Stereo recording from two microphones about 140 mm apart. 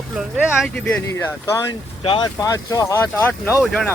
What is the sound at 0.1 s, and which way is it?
Speech, 5° right (ahead or behind).